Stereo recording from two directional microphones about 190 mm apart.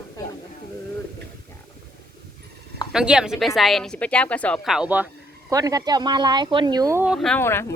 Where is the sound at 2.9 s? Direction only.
5° right (ahead or behind).